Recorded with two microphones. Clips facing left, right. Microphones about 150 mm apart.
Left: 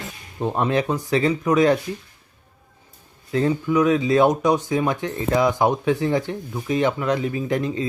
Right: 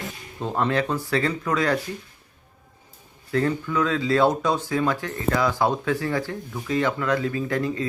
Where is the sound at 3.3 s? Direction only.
20° left (ahead or behind).